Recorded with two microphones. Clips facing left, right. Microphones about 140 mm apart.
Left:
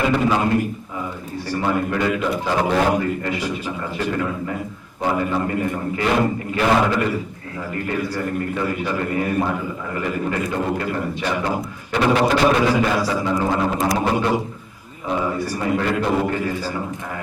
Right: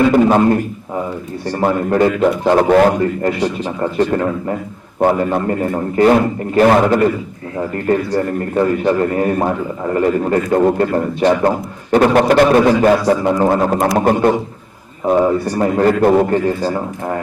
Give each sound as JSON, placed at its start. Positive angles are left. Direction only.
{"t": 0.1, "sound": "a man's voice", "side_deg": -45}
{"t": 3.2, "sound": "a man's voice", "side_deg": -40}
{"t": 4.9, "sound": "a man's voice", "side_deg": -50}
{"t": 15.5, "sound": "a man's voice", "side_deg": -45}